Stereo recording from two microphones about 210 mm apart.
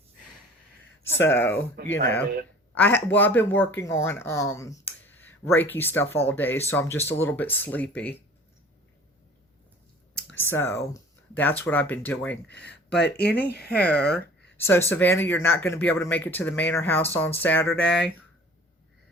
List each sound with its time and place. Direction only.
1.2 s speech: 10° left (ahead or behind)
1.8 s speech: 50° right (ahead or behind)
2.7 s speech: 10° left (ahead or behind)
10.3 s speech: 10° left (ahead or behind)
12.5 s speech: 55° left (ahead or behind)
14.5 s speech: 10° left (ahead or behind)